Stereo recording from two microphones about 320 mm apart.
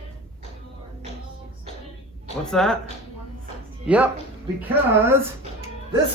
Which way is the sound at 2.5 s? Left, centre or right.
Centre.